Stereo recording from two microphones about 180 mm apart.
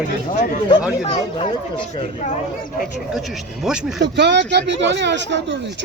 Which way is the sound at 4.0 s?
70° right (ahead or behind).